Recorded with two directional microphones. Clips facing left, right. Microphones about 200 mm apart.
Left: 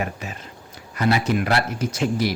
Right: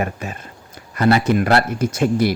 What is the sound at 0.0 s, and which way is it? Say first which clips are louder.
Speech: right 4 dB; 50° right (ahead or behind).